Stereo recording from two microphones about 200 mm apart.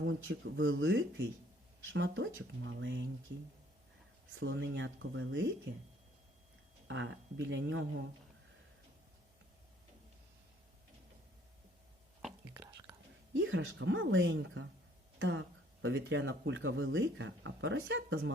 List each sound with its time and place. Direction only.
0.3 s speech: 75° right (ahead or behind); by 1.3 s 60° right (ahead or behind)
1.9 s speech: 70° right (ahead or behind)
4.4 s speech: 70° right (ahead or behind)
6.8 s speech: 70° right (ahead or behind)
13.3 s speech: 70° right (ahead or behind)